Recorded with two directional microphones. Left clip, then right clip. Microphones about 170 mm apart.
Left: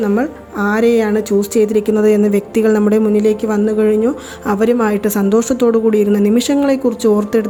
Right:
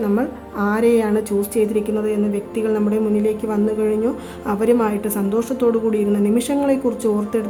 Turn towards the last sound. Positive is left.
turn(degrees=30)  # may be behind; listen again after turning